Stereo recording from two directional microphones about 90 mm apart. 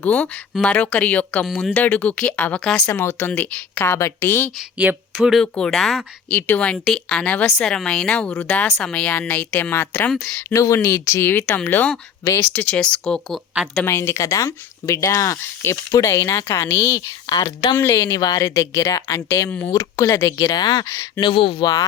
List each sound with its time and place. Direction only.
0.0 s speech: 15° left (ahead or behind)
5.1 s speech: 5° right (ahead or behind)
6.3 s speech: 15° left (ahead or behind)
6.8 s speech: 5° left (ahead or behind); by 10.1 s 20° left (ahead or behind)
10.5 s speech: 35° left (ahead or behind)
12.7 s speech: 10° left (ahead or behind)
13.8 s speech: 30° left (ahead or behind)
17.2 s a woman's voice: 65° left (ahead or behind)
17.7 s speech: 25° left (ahead or behind); by 20.8 s 55° left (ahead or behind)
21.2 s speech: 70° left (ahead or behind)
21.6 s speech: 50° left (ahead or behind)